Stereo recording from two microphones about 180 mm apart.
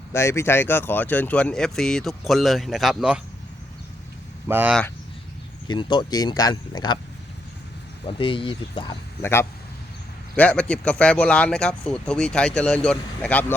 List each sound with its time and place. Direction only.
0.1 s speech: 15° left (ahead or behind); by 3.2 s 5° right (ahead or behind)
4.4 s speech: 10° right (ahead or behind)
5.6 s speech: 25° left (ahead or behind)
8.2 s speech: 30° left (ahead or behind)
9.2 s speech: 15° left (ahead or behind)